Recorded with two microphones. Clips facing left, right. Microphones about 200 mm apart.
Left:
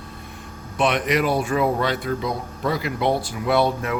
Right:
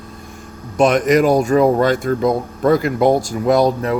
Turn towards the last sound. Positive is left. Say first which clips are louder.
# right 6 dB
turn(degrees=-40)  # may be behind; listen again after turning